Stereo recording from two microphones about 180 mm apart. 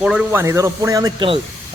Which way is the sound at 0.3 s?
15° right (ahead or behind).